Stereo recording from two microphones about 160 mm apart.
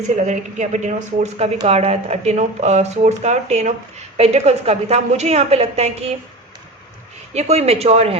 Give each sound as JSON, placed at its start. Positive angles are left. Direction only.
{"t": 0.3, "sound": "a woman's voice", "side_deg": -45}
{"t": 7.3, "sound": "a woman's voice", "side_deg": -40}